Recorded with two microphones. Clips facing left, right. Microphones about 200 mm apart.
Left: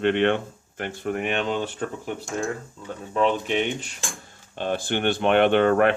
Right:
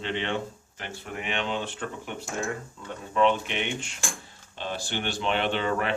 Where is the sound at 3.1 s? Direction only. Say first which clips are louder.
Left 2 dB; 40° left (ahead or behind).